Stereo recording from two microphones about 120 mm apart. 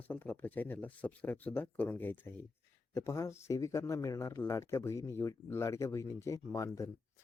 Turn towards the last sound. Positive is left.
turn(degrees=25)  # may be behind; listen again after turning